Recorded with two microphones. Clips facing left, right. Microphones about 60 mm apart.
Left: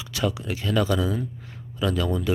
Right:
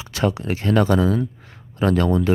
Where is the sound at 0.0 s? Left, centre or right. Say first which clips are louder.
Right 5 dB; right.